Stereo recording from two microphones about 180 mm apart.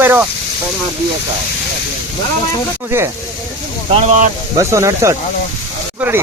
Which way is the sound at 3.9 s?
40° right (ahead or behind).